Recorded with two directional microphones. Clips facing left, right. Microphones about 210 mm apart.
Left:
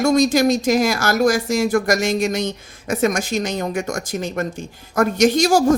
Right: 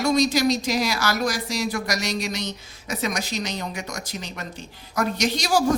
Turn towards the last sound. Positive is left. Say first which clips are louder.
# left 8 dB
turn(degrees=45)  # may be behind; listen again after turning